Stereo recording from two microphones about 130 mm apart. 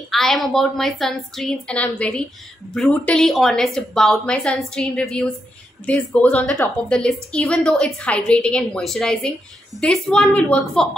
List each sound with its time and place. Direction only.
0.1 s a woman's voice: centre (ahead or behind)